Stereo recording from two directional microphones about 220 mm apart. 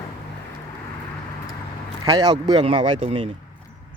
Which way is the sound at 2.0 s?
15° right (ahead or behind).